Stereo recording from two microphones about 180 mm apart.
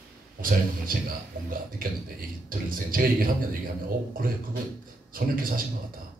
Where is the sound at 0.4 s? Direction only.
50° right (ahead or behind).